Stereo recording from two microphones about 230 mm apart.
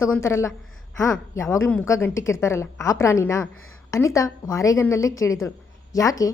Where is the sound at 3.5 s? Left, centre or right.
Left.